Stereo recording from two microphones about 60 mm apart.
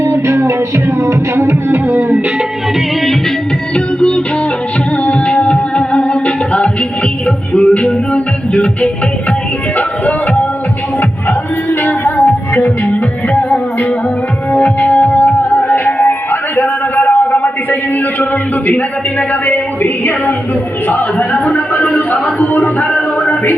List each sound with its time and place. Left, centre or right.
0.0 s music: right
1.9 s music: right
2.7 s music: centre
3.8 s music: centre
19.3 s music: left
22.1 s speech: left
23.2 s music: left